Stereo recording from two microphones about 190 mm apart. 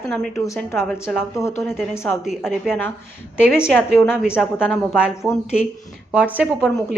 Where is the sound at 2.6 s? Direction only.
10° left (ahead or behind).